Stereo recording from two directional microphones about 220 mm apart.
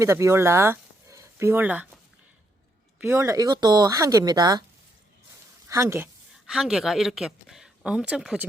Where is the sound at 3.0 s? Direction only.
15° right (ahead or behind).